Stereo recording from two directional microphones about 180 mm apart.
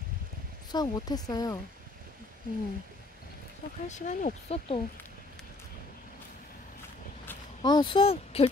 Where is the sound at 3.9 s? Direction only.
45° left (ahead or behind).